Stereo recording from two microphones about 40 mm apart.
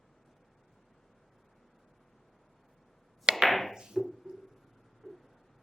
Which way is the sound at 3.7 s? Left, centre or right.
Centre.